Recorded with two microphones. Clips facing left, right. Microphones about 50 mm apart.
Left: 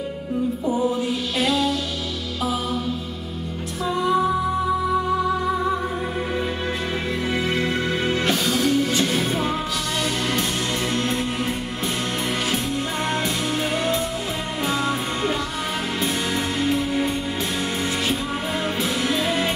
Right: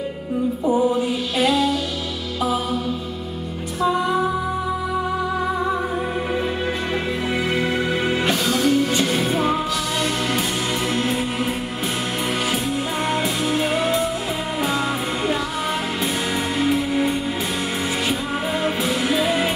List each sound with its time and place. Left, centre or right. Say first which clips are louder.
0.7 s music: right 5 dB; centre
3.8 s music: right 1 dB; centre
7.3 s music: right 2 dB; centre
10.9 s music: right 2 dB; centre
13.1 s music: right 4 dB; centre
16.5 s music: right 3 dB; centre
18.6 s music: right 2 dB; centre